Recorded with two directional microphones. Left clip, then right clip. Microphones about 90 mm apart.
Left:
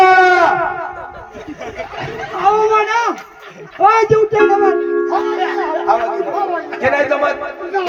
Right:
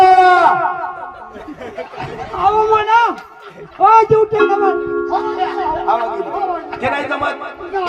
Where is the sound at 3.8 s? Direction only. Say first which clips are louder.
Right 1 dB; 15° right (ahead or behind).